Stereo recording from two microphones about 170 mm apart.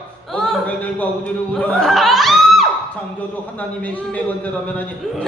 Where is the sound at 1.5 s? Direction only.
5° left (ahead or behind).